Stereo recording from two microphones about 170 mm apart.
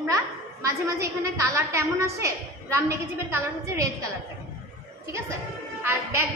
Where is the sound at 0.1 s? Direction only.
20° right (ahead or behind).